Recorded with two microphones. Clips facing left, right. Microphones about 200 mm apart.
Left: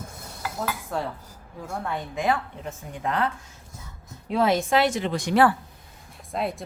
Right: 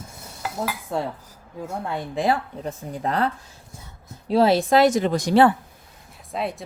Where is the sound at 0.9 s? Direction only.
25° right (ahead or behind).